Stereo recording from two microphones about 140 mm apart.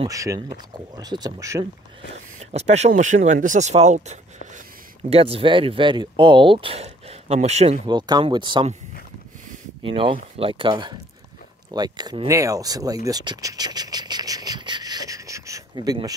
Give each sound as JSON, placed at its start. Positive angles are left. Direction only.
{"t": 0.1, "sound": "speech", "side_deg": -25}
{"t": 2.5, "sound": "speech", "side_deg": -50}
{"t": 5.1, "sound": "speech", "side_deg": -45}
{"t": 7.8, "sound": "speech", "side_deg": -35}
{"t": 9.8, "sound": "speech", "side_deg": -40}